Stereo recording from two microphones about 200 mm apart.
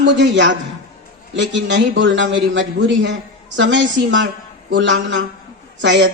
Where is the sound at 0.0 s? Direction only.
65° right (ahead or behind).